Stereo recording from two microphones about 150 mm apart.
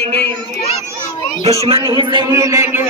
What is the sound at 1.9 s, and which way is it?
Speech, 30° right (ahead or behind).